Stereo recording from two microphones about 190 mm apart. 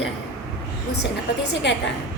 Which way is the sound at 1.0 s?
65° left (ahead or behind).